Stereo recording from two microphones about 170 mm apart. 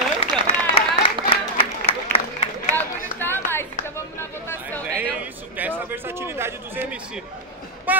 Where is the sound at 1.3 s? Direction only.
35° left (ahead or behind).